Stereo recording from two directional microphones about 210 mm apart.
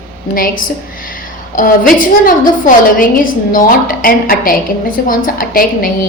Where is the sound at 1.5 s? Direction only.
40° left (ahead or behind).